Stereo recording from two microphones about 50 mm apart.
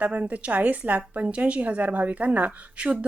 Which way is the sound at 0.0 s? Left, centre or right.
Right.